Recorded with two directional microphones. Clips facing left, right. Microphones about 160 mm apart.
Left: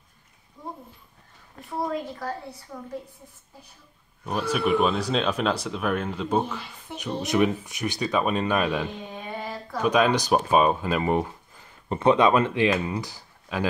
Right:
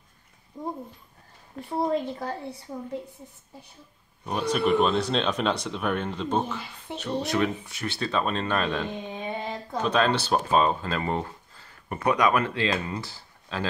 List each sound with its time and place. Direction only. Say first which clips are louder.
1.7 s speech: right 3 dB; 25° right (ahead or behind)
4.3 s speech: even; 5° left (ahead or behind)
9.4 s a sound: right 1 dB; 20° right (ahead or behind)
9.8 s speech: left 3 dB; 10° left (ahead or behind)